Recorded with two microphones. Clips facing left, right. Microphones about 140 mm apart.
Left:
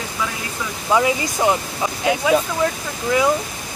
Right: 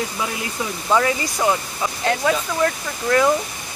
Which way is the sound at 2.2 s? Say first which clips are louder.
Left 2 dB; 10° left (ahead or behind).